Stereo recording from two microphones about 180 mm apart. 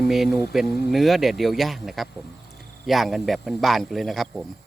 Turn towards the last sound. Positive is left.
turn(degrees=0)  # may be behind; listen again after turning